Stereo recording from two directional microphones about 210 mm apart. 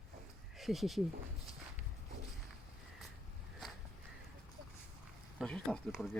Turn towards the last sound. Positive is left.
turn(degrees=0)  # may be behind; listen again after turning